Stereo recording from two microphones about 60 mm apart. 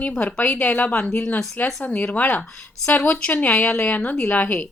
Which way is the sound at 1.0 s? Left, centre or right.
Centre.